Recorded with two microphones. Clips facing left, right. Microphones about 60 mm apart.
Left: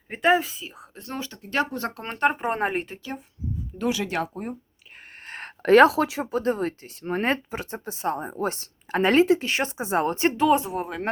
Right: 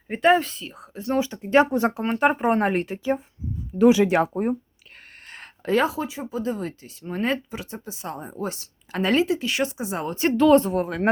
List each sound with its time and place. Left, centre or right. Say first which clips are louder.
0.1 s speech: right 2 dB; centre
1.4 s speech: right 7 dB; right
2.0 s speech: right 1 dB; centre
3.8 s speech: right 10 dB; right
5.2 s a sound: left 5 dB; left
5.6 s speech: left 7 dB; left
10.2 s speech: right 7 dB; centre